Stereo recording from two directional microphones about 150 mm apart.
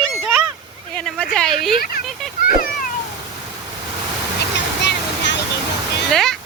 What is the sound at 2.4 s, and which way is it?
Children playing, 70° left (ahead or behind).